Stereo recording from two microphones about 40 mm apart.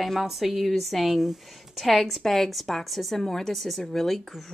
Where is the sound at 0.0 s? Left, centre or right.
Centre.